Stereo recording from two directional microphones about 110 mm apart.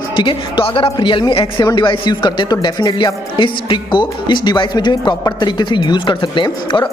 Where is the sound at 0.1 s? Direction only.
50° left (ahead or behind).